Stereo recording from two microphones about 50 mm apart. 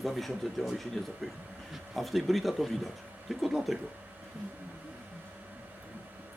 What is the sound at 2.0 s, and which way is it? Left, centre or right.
A man's voice, centre.